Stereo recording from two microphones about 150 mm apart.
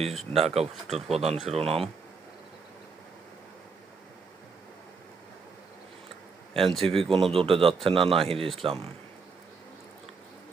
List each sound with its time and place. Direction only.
0.3 s speech: 45° right (ahead or behind)
0.9 s speech: centre (ahead or behind)
1.1 s speech: 40° right (ahead or behind)
6.6 s speech: centre (ahead or behind)
6.8 s speech: 40° right (ahead or behind)